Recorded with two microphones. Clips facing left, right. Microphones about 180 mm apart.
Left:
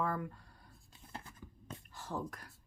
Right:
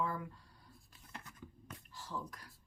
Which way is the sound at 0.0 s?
55° left (ahead or behind).